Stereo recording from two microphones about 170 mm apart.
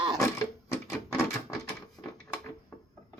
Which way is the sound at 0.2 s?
15° left (ahead or behind).